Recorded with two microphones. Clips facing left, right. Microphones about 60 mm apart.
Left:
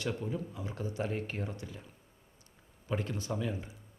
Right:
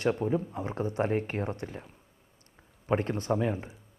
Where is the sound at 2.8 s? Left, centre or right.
Right.